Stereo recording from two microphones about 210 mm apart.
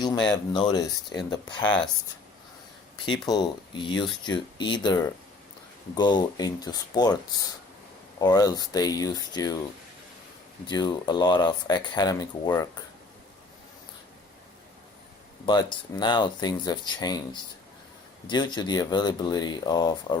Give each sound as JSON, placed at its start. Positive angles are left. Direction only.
{"t": 0.5, "sound": "speech", "side_deg": 20}
{"t": 3.1, "sound": "speech", "side_deg": 20}
{"t": 8.2, "sound": "speech", "side_deg": 20}
{"t": 10.7, "sound": "speech", "side_deg": 20}
{"t": 15.4, "sound": "speech", "side_deg": 20}
{"t": 18.3, "sound": "speech", "side_deg": 20}